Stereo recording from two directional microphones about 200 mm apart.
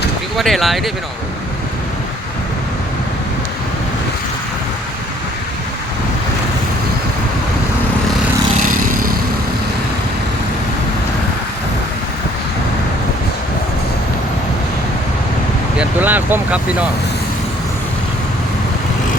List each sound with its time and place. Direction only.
0.3 s speech: centre (ahead or behind)
8.6 s vehicle: 45° right (ahead or behind)
15.8 s speech: 10° right (ahead or behind)